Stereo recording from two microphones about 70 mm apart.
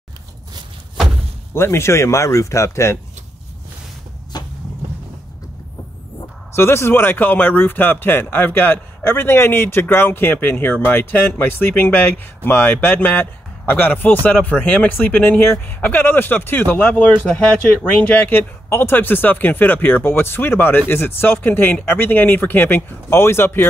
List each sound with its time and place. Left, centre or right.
1.5 s speech: left
4.3 s vehicle: left
6.5 s speech: left